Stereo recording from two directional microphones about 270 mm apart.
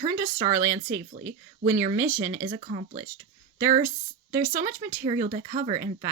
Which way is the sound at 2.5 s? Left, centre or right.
Right.